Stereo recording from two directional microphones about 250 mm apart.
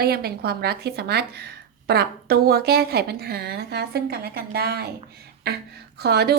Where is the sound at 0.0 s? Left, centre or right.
Right.